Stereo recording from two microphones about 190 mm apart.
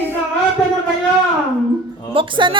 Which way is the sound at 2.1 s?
25° right (ahead or behind).